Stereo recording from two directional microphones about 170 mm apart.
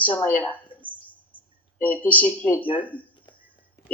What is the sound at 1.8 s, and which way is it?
Speech, 10° left (ahead or behind).